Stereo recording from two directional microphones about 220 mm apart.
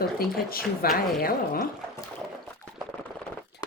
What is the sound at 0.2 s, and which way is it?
Speech, 40° left (ahead or behind).